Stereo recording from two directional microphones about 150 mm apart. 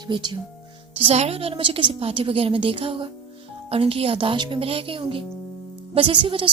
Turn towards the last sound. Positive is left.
turn(degrees=-35)  # may be behind; listen again after turning